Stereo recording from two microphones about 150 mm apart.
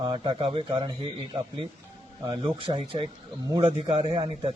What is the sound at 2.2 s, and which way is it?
Speech, 30° right (ahead or behind).